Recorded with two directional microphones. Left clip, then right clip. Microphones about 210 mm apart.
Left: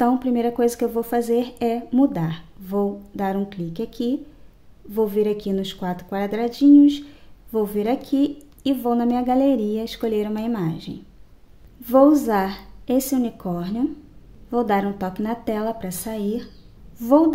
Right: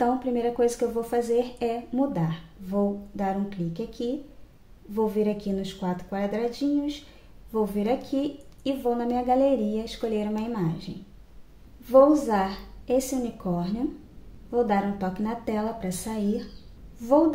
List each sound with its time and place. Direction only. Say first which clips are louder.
0.0 s a woman's voice: left 4 dB; 45° left (ahead or behind)